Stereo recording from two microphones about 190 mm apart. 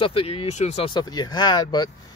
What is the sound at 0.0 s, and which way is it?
Speech, 30° left (ahead or behind).